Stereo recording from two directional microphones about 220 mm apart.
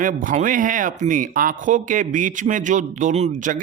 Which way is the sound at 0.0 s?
35° right (ahead or behind).